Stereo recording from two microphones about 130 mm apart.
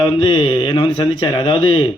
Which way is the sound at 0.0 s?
40° left (ahead or behind).